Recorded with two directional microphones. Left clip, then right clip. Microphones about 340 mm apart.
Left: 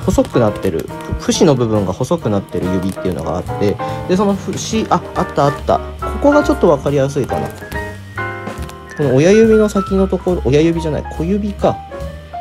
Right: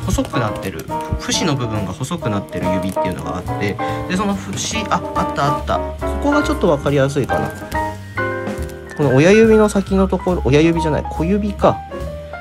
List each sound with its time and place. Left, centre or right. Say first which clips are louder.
0.0 s speech: left 7 dB; centre
8.9 s speech: left 1 dB; centre